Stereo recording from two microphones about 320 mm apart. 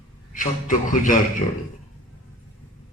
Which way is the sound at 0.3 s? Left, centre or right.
Left.